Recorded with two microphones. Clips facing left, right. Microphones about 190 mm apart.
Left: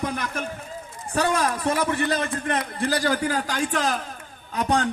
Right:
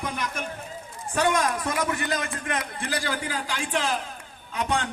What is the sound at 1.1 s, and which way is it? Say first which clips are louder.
A man's voice: left 1 dB; 35° left (ahead or behind).